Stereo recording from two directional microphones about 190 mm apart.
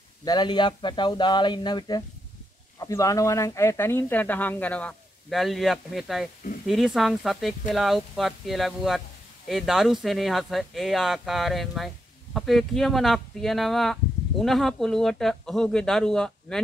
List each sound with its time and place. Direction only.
0.2 s speech: 20° left (ahead or behind); by 16.5 s 5° left (ahead or behind)